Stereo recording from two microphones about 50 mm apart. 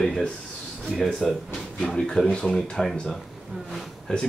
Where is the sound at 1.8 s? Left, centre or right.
Centre.